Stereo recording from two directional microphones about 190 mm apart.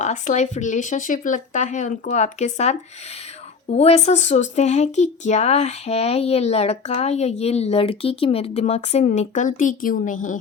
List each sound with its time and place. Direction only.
0.0 s speech: 40° left (ahead or behind)